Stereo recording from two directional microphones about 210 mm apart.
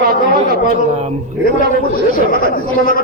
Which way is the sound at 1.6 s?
45° left (ahead or behind).